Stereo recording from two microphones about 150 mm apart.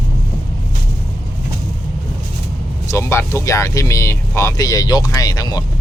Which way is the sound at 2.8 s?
20° left (ahead or behind).